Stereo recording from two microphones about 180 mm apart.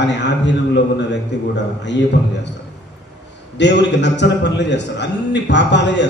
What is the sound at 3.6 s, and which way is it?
A man's voice, 75° left (ahead or behind).